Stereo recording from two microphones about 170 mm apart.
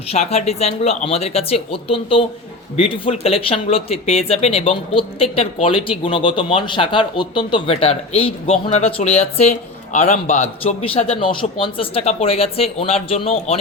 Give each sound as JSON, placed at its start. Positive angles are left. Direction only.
{"t": 0.1, "sound": "speech", "side_deg": 35}